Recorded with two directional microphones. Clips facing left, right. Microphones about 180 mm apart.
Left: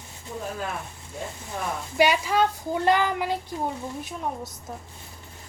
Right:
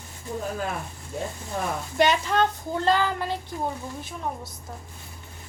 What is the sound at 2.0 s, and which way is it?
A woman's voice, 10° left (ahead or behind).